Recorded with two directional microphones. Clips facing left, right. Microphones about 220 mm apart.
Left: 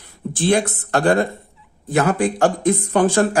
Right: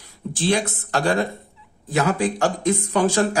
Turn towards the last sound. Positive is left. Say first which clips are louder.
# left 3 dB
turn(degrees=50)  # may be behind; listen again after turning